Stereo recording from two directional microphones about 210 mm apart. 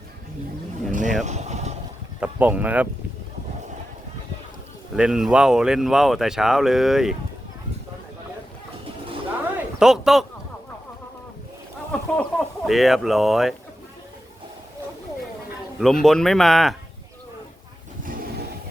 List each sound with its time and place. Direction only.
0.9 s a sound: 40° right (ahead or behind)
2.2 s speech: 5° right (ahead or behind)
4.9 s speech: 5° right (ahead or behind)
9.8 s speech: centre (ahead or behind)
11.9 s speech: 5° left (ahead or behind)
15.8 s speech: centre (ahead or behind)
18.0 s vehicle: 40° right (ahead or behind)